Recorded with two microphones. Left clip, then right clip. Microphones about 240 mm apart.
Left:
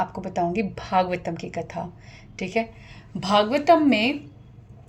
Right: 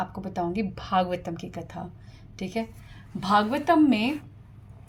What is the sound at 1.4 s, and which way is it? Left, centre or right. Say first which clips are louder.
Speech: left 7 dB; right.